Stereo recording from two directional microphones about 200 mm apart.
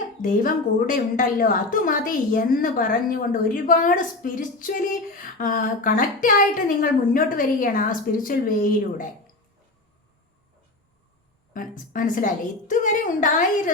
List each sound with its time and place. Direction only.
0.2 s a woman's voice: 40° left (ahead or behind)
11.5 s a woman's voice: 40° left (ahead or behind)